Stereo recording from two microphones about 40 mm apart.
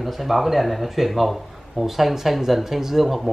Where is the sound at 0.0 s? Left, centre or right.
Centre.